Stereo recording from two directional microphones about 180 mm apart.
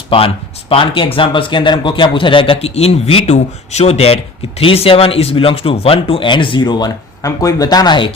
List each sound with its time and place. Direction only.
0.1 s speech: 30° left (ahead or behind)